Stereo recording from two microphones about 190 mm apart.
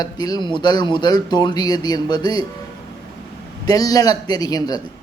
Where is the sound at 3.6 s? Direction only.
20° left (ahead or behind).